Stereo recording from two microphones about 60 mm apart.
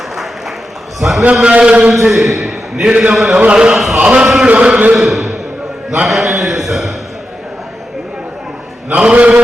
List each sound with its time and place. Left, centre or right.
0.9 s a man's voice: centre
1.2 s a man's voice: centre
2.0 s a man's voice: centre; by 4.9 s right
4.9 s a sound: centre
6.1 s a man's voice: centre
9.0 s a man's voice: centre